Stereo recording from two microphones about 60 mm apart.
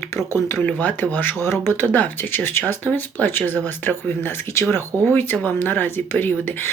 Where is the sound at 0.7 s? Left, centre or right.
Left.